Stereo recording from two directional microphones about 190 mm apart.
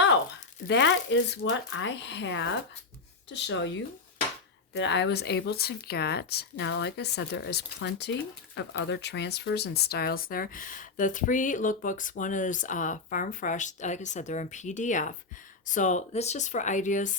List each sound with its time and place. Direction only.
0.7 s speech: 70° left (ahead or behind); by 17.2 s 40° left (ahead or behind)